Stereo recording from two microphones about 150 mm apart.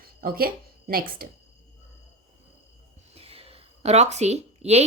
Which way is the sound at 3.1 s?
40° right (ahead or behind).